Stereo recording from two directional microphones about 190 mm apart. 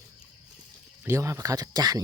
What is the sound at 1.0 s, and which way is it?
Speech, 15° right (ahead or behind).